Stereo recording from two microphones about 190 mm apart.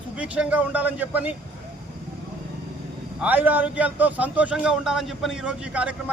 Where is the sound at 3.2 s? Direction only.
10° right (ahead or behind).